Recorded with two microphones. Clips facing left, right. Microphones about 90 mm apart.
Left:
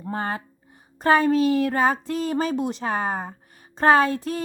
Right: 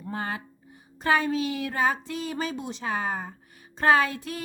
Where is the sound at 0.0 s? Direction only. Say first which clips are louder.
Left 4 dB; 40° left (ahead or behind).